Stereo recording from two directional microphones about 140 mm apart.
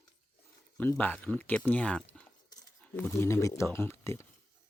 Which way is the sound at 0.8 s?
10° left (ahead or behind).